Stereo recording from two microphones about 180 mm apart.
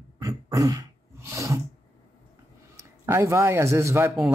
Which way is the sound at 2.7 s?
15° right (ahead or behind).